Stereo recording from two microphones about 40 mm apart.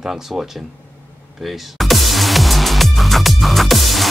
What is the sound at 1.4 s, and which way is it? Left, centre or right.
Music, centre.